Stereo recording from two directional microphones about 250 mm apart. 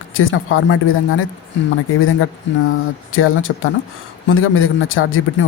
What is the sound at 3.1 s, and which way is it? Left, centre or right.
Speech, left.